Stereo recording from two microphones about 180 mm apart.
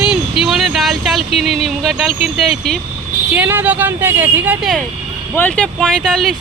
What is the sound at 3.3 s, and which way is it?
Speech, 10° right (ahead or behind).